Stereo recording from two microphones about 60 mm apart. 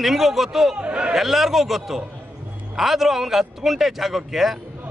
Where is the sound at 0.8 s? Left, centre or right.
Centre.